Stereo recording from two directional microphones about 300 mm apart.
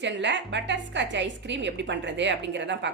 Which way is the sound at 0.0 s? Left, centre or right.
Right.